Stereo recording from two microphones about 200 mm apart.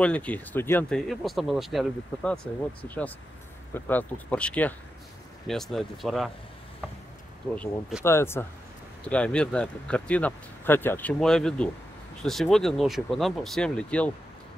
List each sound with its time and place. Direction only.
0.0 s speech: 5° left (ahead or behind)
8.0 s speech: 15° left (ahead or behind)